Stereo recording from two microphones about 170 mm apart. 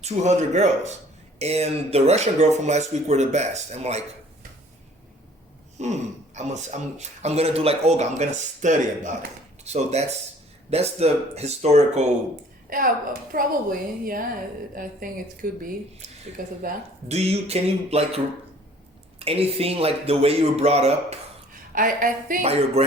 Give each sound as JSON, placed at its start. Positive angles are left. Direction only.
{"t": 0.0, "sound": "speech", "side_deg": -40}
{"t": 5.8, "sound": "speech", "side_deg": -45}
{"t": 12.7, "sound": "a woman's voice", "side_deg": -55}
{"t": 17.1, "sound": "speech", "side_deg": -40}
{"t": 19.2, "sound": "speech", "side_deg": -35}
{"t": 21.8, "sound": "speech", "side_deg": -55}
{"t": 22.4, "sound": "speech", "side_deg": -35}